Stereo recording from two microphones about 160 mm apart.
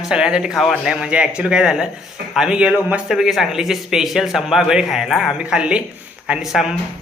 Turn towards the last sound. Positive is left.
turn(degrees=0)  # may be behind; listen again after turning